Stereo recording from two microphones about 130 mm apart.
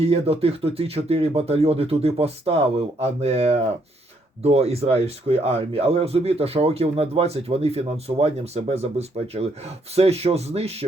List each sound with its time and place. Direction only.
0.0 s speech: 50° right (ahead or behind)